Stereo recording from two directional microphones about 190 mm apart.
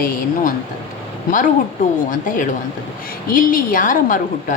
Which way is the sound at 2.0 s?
45° left (ahead or behind).